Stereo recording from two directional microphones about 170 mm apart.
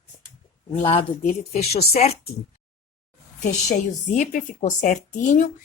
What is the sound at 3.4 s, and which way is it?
A woman's voice, 45° left (ahead or behind).